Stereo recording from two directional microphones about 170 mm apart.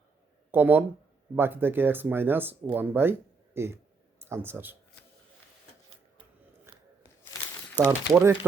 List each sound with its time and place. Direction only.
0.5 s a man's voice: 10° right (ahead or behind)
6.7 s a sound: 15° right (ahead or behind)
7.9 s speech: 15° right (ahead or behind)